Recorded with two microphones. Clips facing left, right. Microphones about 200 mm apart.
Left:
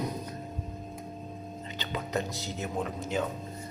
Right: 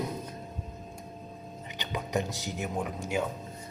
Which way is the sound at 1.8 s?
15° right (ahead or behind).